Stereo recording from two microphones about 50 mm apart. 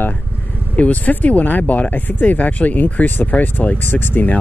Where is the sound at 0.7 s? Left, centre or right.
Left.